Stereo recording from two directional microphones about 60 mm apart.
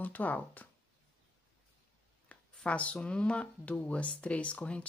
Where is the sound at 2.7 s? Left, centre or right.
Left.